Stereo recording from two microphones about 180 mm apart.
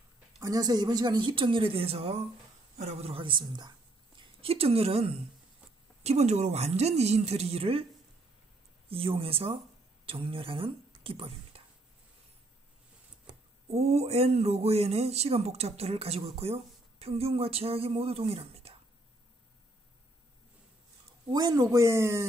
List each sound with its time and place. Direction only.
0.4 s a woman's voice: 20° right (ahead or behind)
8.8 s a woman's voice: 30° right (ahead or behind)
13.3 s speech: 35° right (ahead or behind)
21.3 s speech: 20° right (ahead or behind)